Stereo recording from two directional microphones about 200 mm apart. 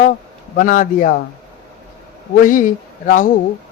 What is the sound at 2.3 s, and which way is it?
Speech, 40° left (ahead or behind).